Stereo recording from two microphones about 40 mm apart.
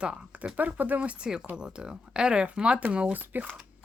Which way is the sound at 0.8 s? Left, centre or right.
Right.